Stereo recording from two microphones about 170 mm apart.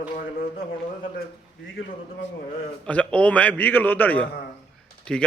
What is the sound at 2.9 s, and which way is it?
A man's voice, 10° left (ahead or behind).